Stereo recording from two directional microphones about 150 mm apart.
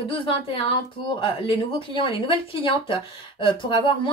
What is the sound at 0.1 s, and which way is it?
Speech, 35° left (ahead or behind).